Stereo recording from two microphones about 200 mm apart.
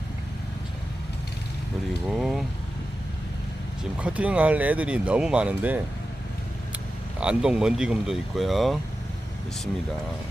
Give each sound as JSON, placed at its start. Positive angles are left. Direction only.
{"t": 2.0, "sound": "speech", "side_deg": 0}
{"t": 4.0, "sound": "speech", "side_deg": -5}
{"t": 7.2, "sound": "speech", "side_deg": -5}